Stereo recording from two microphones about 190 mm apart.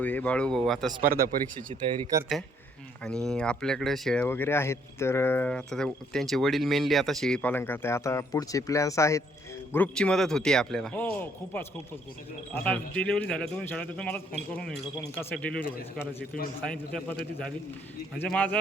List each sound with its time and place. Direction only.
0.0 s speech: 10° left (ahead or behind)
1.7 s speech: 30° right (ahead or behind)
3.0 s speech: 5° left (ahead or behind)
16.6 s speech: 5° left (ahead or behind)
18.2 s speech: 10° left (ahead or behind)